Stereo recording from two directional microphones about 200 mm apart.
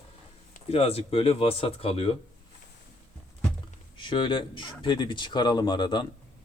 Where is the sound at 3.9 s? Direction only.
25° left (ahead or behind).